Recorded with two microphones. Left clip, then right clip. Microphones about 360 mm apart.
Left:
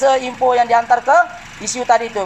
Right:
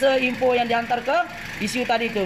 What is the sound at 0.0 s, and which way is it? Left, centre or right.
A woman's voice, left.